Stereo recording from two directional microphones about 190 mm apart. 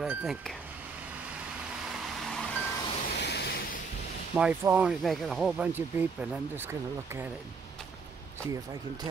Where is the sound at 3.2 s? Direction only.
60° left (ahead or behind).